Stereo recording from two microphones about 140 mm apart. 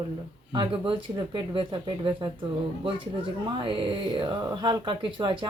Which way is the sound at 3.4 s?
35° right (ahead or behind).